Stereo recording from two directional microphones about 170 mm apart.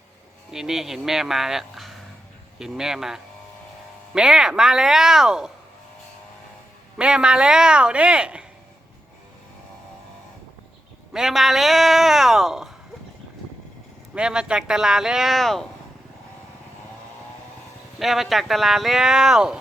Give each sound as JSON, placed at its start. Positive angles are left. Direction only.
{"t": 0.5, "sound": "speech", "side_deg": -5}
{"t": 7.0, "sound": "speech", "side_deg": -5}
{"t": 11.1, "sound": "speech", "side_deg": 0}
{"t": 14.2, "sound": "speech", "side_deg": -5}
{"t": 18.0, "sound": "speech", "side_deg": 0}